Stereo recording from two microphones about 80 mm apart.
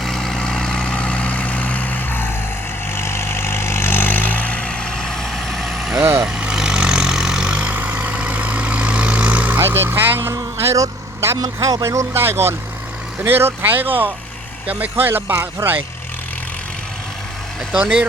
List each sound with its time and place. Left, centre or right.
0.0 s vehicle: centre
6.0 s vehicle: right
6.2 s vehicle: centre
9.6 s speech: right
10.6 s vehicle: right
11.4 s speech: right
17.7 s speech: centre